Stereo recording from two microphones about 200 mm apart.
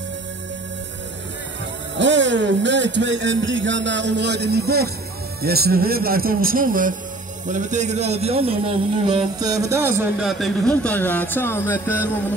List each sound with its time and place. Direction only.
2.0 s a man's voice: 65° right (ahead or behind); by 10.2 s 10° right (ahead or behind)
10.2 s speech: centre (ahead or behind)